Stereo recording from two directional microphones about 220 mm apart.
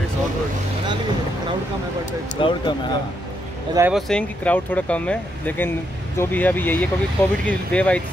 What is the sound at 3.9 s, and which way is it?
Speech, centre (ahead or behind).